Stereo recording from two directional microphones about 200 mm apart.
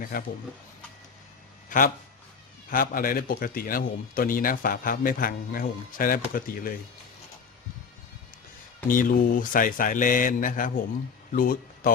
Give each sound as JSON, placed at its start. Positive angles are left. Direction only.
{"t": 0.0, "sound": "a man's voice", "side_deg": 45}
{"t": 1.7, "sound": "a man's voice", "side_deg": 40}
{"t": 8.9, "sound": "a man's voice", "side_deg": 45}